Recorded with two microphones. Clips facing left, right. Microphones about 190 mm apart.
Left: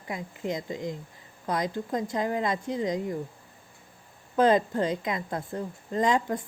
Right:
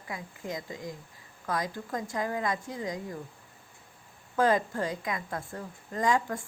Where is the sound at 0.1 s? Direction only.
20° left (ahead or behind).